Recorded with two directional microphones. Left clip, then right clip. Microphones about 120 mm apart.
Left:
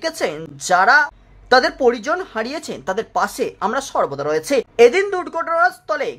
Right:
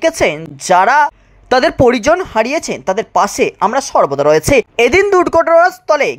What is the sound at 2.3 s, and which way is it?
Speech, 30° right (ahead or behind).